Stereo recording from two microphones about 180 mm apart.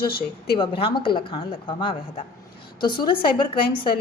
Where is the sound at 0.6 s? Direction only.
30° left (ahead or behind).